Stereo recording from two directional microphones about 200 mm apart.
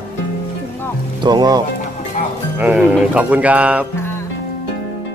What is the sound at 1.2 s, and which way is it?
Speech, 20° right (ahead or behind).